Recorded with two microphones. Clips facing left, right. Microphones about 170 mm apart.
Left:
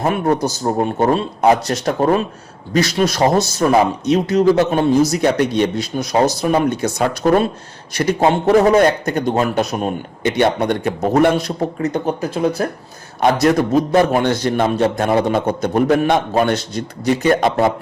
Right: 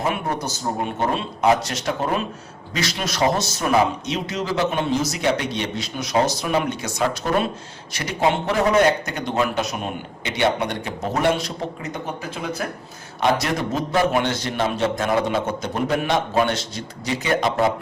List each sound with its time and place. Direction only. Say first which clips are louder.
0.0 s a man's voice: left 7 dB; 45° left (ahead or behind)
6.0 s speech: left 5 dB; 35° left (ahead or behind)
6.5 s a man's voice: left 6 dB; 50° left (ahead or behind)
12.0 s a man's voice: left 9 dB; 35° left (ahead or behind); by 17.7 s 55° left (ahead or behind)